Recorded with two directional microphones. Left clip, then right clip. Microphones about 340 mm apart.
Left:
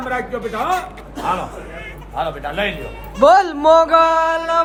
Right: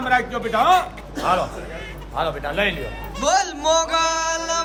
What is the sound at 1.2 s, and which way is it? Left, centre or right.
A man's voice, centre.